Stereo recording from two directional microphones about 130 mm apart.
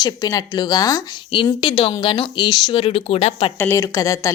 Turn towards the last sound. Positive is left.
turn(degrees=25)  # may be behind; listen again after turning